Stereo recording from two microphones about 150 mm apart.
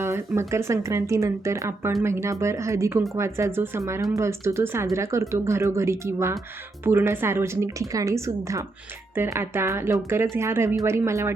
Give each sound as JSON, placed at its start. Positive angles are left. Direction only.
{"t": 0.0, "sound": "speech", "side_deg": -15}